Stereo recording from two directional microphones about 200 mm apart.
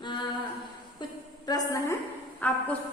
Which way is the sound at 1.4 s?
15° left (ahead or behind).